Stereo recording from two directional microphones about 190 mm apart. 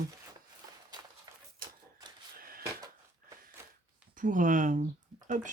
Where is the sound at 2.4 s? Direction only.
50° right (ahead or behind).